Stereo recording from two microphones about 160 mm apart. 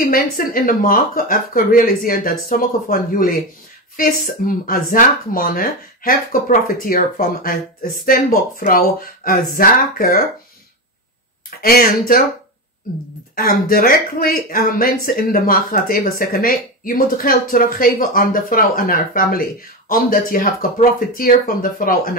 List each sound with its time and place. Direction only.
0.0 s speech: 65° left (ahead or behind)
11.6 s speech: 65° left (ahead or behind)
13.4 s speech: 65° left (ahead or behind)